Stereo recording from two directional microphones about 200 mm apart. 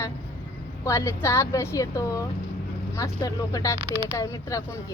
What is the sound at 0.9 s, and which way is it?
Speech, 15° left (ahead or behind).